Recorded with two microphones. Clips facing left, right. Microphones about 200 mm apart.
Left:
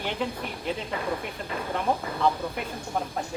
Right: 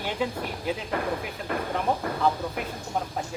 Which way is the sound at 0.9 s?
55° right (ahead or behind).